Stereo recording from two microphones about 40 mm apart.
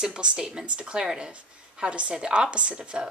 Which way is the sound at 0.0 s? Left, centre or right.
Right.